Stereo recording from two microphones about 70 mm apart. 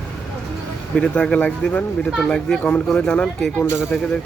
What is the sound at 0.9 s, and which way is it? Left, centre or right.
Speech, centre.